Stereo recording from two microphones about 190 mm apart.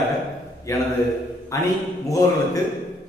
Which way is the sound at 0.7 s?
15° left (ahead or behind).